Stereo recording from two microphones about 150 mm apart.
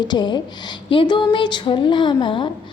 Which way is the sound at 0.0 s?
30° left (ahead or behind).